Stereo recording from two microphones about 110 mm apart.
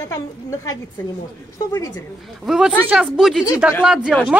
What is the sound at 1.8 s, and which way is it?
Speech, 35° left (ahead or behind).